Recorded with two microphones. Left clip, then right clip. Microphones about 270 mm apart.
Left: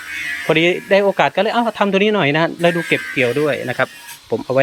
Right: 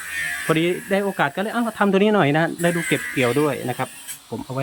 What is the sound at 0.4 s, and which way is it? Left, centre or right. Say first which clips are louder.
Speech: left 8 dB; centre.